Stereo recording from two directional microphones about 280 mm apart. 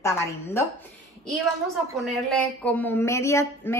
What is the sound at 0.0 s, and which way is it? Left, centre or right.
Speech, centre.